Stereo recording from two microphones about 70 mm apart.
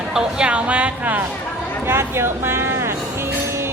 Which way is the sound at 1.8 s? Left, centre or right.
Right.